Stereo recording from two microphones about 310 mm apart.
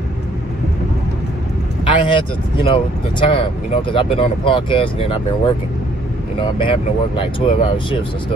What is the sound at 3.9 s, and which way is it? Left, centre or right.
Speech, centre.